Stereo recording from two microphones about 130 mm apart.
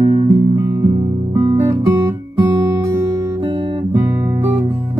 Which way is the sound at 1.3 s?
20° right (ahead or behind).